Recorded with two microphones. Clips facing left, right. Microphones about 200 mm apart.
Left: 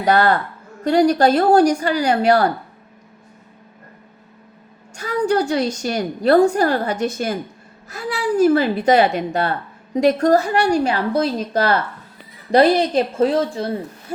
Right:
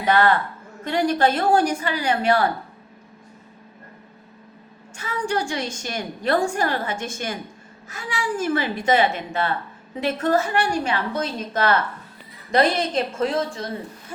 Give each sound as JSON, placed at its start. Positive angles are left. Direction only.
{"t": 0.0, "sound": "a woman's voice", "side_deg": 40}
{"t": 4.9, "sound": "a woman's voice", "side_deg": 40}